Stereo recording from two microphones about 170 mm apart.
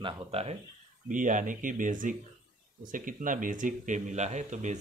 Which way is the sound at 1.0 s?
50° right (ahead or behind).